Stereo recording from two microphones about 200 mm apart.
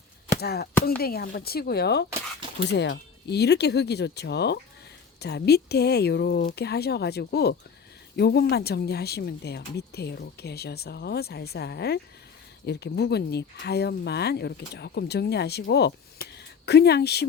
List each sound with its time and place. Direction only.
0.3 s chopping: 50° left (ahead or behind)
1.0 s speech: 50° left (ahead or behind)